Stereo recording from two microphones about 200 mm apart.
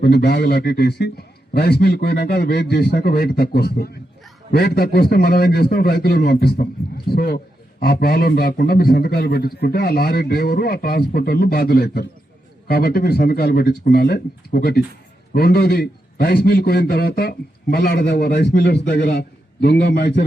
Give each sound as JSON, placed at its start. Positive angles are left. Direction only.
{"t": 0.0, "sound": "a man's voice", "side_deg": 55}